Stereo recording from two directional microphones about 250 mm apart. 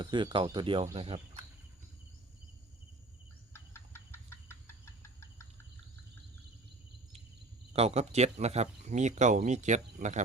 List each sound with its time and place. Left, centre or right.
0.0 s speech: centre
3.5 s a sound: centre
7.7 s speech: right